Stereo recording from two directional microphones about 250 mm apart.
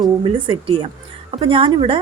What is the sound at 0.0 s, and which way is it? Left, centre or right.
A woman's voice, centre.